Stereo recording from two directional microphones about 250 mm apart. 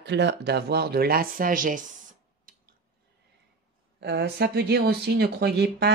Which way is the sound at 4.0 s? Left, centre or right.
Right.